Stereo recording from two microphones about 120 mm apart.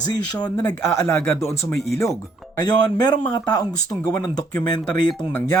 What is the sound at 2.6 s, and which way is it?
Speech, 35° left (ahead or behind).